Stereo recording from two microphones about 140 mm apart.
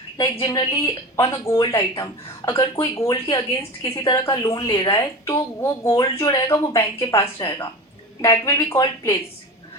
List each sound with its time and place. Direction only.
0.4 s speech: 30° left (ahead or behind)